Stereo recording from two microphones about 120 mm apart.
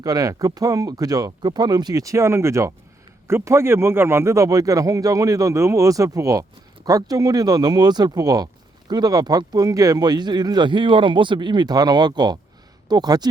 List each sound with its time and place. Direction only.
0.0 s speech: 30° right (ahead or behind)